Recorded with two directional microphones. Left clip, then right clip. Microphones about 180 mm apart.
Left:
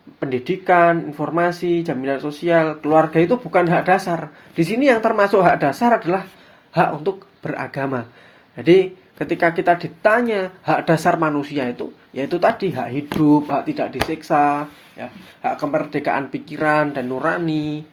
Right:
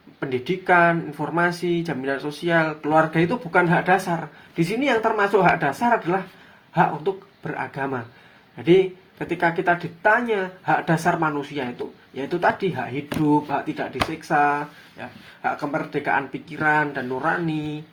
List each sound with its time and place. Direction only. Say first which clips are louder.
0.2 s speech: left 3 dB; 25° left (ahead or behind)